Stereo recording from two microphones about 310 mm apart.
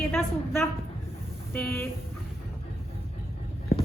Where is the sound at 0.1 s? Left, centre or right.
Centre.